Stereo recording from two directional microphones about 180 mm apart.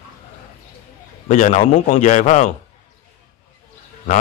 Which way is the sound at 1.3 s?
40° left (ahead or behind).